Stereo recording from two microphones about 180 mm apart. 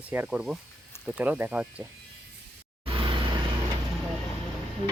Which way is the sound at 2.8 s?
30° right (ahead or behind).